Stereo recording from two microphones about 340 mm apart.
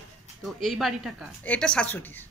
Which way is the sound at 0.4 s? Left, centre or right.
Centre.